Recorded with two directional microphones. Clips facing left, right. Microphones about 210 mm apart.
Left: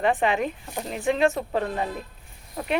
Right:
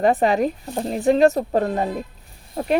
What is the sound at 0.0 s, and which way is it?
Speech, 40° right (ahead or behind).